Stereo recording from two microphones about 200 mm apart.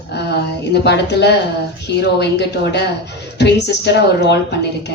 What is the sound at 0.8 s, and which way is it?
A woman's voice, 55° left (ahead or behind).